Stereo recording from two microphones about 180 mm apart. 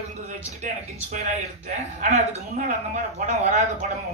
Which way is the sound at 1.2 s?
40° right (ahead or behind).